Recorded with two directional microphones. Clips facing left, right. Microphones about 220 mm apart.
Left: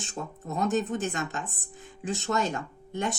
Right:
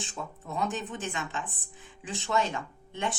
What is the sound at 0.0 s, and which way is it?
Speech, 40° left (ahead or behind).